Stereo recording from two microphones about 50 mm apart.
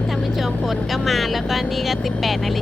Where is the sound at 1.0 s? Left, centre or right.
Centre.